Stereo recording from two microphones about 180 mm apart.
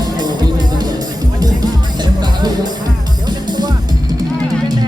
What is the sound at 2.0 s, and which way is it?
Music, 25° right (ahead or behind).